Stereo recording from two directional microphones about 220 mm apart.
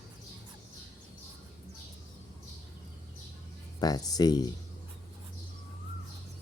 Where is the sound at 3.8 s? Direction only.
15° left (ahead or behind).